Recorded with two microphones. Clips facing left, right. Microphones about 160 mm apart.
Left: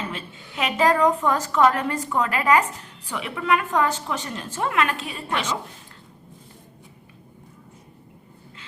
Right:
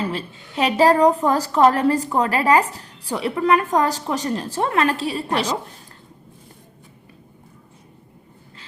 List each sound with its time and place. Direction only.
0.0 s a woman's voice: 35° right (ahead or behind)